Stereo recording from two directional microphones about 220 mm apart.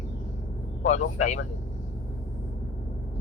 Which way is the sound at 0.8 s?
30° left (ahead or behind).